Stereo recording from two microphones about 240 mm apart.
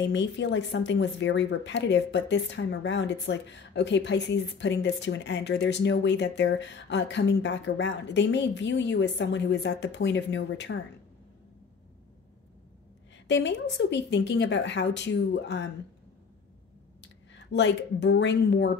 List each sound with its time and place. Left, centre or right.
0.0 s speech: left
13.3 s speech: left
17.3 s speech: left